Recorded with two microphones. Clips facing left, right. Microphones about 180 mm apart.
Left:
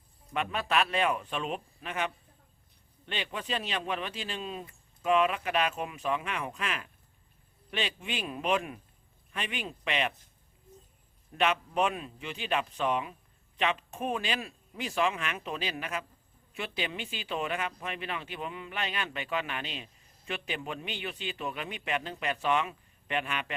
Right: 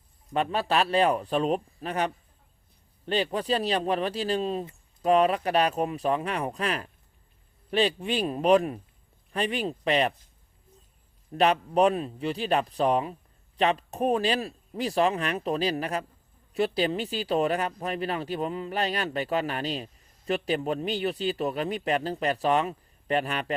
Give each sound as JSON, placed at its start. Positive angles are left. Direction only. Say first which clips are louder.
{"t": 0.3, "sound": "speech", "louder": "right 4 dB", "side_deg": -35}
{"t": 11.3, "sound": "speech", "louder": "right 6 dB", "side_deg": -35}